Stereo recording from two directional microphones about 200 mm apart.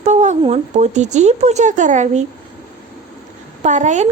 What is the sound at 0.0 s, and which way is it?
A woman's voice, 35° right (ahead or behind).